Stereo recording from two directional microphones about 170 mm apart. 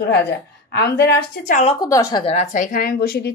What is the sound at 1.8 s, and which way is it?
Speech, 20° left (ahead or behind).